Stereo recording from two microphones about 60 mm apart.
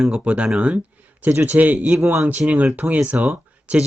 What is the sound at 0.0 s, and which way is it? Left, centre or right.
Speech, centre.